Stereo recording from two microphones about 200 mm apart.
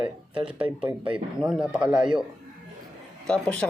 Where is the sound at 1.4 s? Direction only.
5° right (ahead or behind).